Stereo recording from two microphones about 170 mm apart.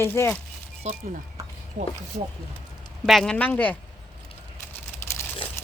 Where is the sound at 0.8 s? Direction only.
40° right (ahead or behind).